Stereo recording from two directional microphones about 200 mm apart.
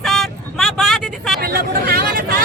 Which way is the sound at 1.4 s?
50° right (ahead or behind).